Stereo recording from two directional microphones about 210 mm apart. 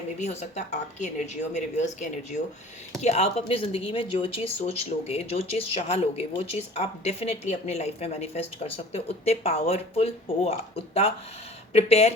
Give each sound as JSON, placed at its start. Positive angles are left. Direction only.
{"t": 0.2, "sound": "a woman's voice", "side_deg": 30}